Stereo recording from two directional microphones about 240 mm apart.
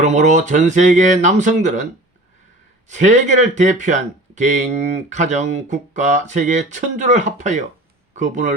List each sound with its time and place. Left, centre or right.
0.0 s speech: right
2.9 s speech: right